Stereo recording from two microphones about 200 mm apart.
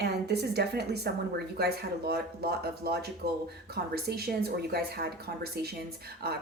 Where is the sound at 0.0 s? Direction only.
55° right (ahead or behind).